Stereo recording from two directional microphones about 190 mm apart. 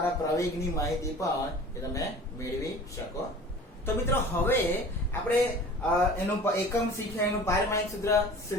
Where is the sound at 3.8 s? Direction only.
10° left (ahead or behind).